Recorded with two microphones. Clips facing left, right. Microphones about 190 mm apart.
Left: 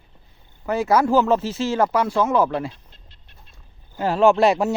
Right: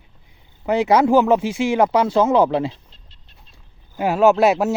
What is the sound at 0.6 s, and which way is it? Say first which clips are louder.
Speech: right 3 dB; 20° right (ahead or behind).